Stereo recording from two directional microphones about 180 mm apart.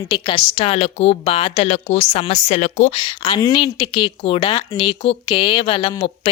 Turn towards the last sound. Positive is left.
turn(degrees=30)  # may be behind; listen again after turning